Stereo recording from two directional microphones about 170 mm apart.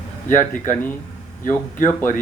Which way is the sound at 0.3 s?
50° left (ahead or behind).